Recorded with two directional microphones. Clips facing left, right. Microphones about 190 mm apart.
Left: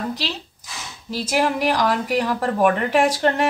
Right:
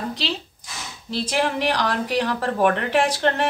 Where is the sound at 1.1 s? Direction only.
10° left (ahead or behind).